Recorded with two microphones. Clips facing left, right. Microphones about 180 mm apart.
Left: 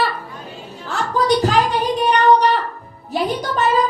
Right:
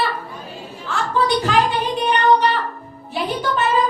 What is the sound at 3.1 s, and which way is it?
Music, 40° left (ahead or behind).